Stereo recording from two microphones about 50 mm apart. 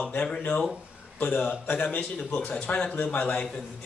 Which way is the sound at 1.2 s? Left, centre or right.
Left.